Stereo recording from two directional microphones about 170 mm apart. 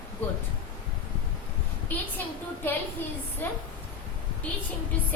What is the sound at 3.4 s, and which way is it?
Speech, 10° left (ahead or behind).